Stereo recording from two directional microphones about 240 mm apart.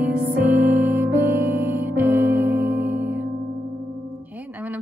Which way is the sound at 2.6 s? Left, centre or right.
Right.